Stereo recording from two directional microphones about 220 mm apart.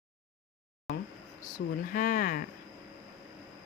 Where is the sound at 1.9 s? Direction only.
40° left (ahead or behind).